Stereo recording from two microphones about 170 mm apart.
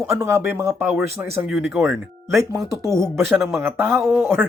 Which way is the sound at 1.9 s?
20° right (ahead or behind).